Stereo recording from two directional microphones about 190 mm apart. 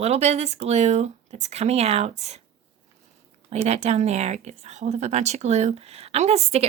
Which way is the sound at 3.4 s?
35° right (ahead or behind).